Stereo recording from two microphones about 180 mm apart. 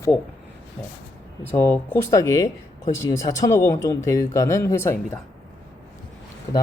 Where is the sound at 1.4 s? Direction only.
10° left (ahead or behind).